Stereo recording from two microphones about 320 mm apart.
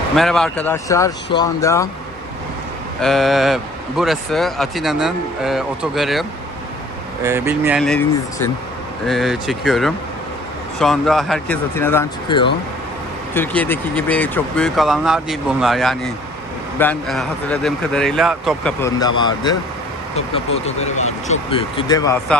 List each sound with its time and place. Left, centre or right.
0.2 s speech: centre
3.0 s speech: centre
7.3 s speech: centre